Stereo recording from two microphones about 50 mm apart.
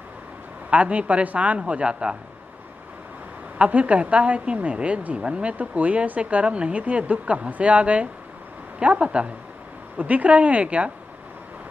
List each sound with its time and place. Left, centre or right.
0.7 s a woman's voice: right
3.5 s a woman's voice: right